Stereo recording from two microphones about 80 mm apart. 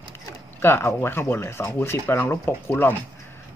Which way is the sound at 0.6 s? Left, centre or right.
Left.